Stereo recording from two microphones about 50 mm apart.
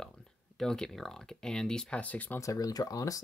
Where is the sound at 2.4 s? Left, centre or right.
Left.